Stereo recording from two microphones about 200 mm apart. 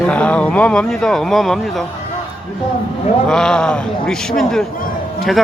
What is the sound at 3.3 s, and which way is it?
Speech, 5° left (ahead or behind).